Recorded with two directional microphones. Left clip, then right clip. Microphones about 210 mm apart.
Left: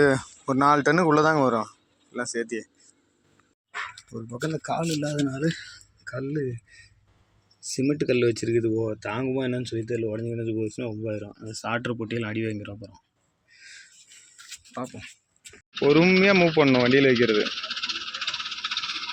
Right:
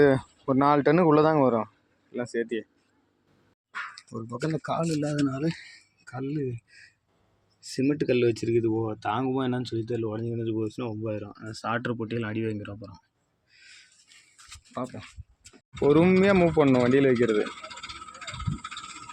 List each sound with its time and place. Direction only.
0.0 s speech: 5° right (ahead or behind)
4.1 s speech: 5° right (ahead or behind)
7.6 s speech: centre (ahead or behind)
14.7 s speech: 5° right (ahead or behind)
17.2 s a sound: 30° right (ahead or behind)
18.6 s coin: 20° right (ahead or behind)